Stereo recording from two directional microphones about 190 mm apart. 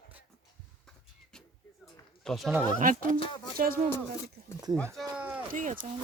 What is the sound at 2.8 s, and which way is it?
Speech, 45° right (ahead or behind).